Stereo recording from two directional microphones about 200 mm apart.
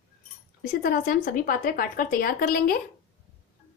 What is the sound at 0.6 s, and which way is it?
A woman's voice, 45° left (ahead or behind).